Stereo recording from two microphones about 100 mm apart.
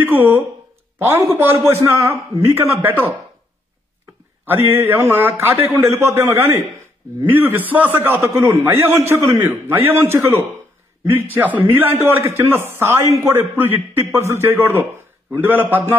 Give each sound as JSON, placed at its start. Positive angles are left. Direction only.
{"t": 0.0, "sound": "a man's voice", "side_deg": -20}
{"t": 4.5, "sound": "a man's voice", "side_deg": -20}